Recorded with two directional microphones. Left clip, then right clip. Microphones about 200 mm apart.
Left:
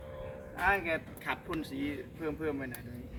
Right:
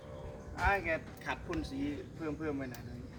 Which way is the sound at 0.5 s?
15° right (ahead or behind).